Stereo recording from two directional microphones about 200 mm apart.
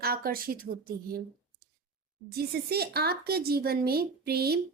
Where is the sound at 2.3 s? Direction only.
50° right (ahead or behind).